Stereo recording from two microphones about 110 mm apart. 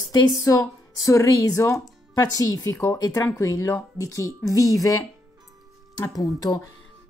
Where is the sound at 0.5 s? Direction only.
30° left (ahead or behind).